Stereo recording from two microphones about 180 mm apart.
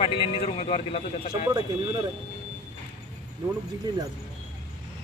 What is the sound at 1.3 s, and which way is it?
Speech, 25° right (ahead or behind).